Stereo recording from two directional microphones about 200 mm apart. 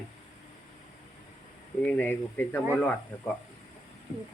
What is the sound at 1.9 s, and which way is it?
Speech, 10° left (ahead or behind).